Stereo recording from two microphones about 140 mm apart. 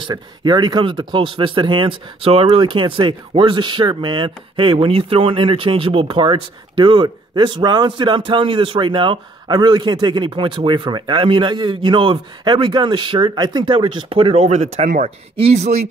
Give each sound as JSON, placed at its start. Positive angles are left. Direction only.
{"t": 0.0, "sound": "speech", "side_deg": -30}
{"t": 15.3, "sound": "speech", "side_deg": -45}